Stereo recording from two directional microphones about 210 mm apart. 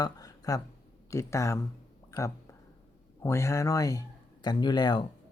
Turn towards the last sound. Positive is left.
turn(degrees=20)  # may be behind; listen again after turning